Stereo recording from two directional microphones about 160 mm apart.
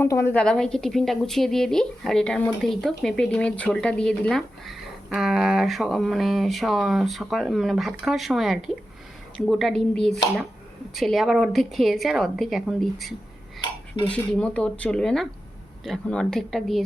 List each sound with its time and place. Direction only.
0.0 s speech: 15° left (ahead or behind)
0.3 s speech: 5° left (ahead or behind)